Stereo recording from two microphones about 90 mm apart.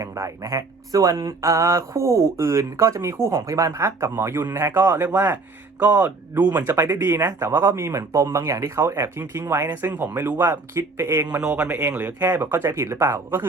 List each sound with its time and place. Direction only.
0.0 s speech: 35° right (ahead or behind)
11.3 s speech: 15° right (ahead or behind); by 13.4 s 30° right (ahead or behind)